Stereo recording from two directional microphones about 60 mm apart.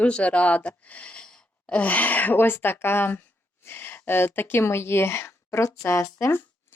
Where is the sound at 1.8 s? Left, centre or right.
Left.